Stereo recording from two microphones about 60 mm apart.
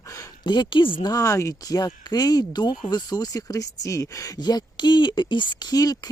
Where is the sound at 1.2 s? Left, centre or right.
Left.